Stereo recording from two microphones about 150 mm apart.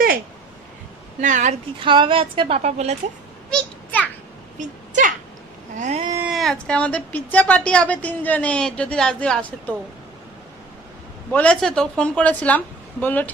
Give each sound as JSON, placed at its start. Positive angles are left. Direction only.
{"t": 1.2, "sound": "a woman's voice", "side_deg": -55}
{"t": 1.8, "sound": "a woman's voice", "side_deg": -35}
{"t": 2.6, "sound": "a woman's voice", "side_deg": -45}
{"t": 3.5, "sound": "a sound", "side_deg": 10}
{"t": 4.5, "sound": "a sound", "side_deg": -55}
{"t": 6.3, "sound": "a woman's voice", "side_deg": 0}
{"t": 11.3, "sound": "a woman's voice", "side_deg": 10}